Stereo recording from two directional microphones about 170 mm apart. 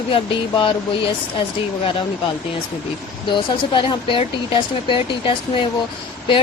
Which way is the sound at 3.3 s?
30° left (ahead or behind).